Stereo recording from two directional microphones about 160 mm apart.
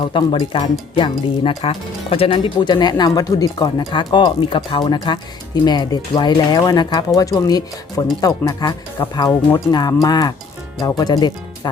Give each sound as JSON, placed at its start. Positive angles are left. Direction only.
{"t": 0.0, "sound": "speech", "side_deg": 30}